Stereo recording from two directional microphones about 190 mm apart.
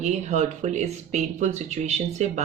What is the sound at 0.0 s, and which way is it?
Speech, 35° right (ahead or behind).